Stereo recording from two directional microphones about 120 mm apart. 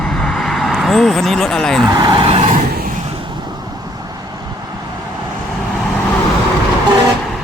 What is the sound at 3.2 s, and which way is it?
Vehicle, 40° right (ahead or behind).